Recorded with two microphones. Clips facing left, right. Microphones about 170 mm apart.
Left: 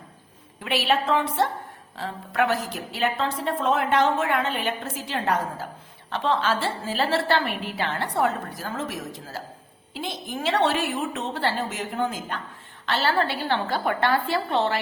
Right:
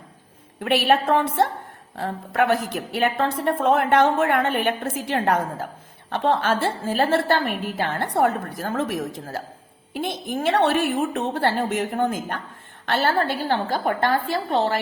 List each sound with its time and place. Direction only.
0.6 s a woman's voice: 55° right (ahead or behind)